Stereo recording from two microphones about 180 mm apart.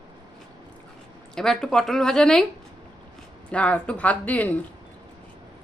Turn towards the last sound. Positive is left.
turn(degrees=10)  # may be behind; listen again after turning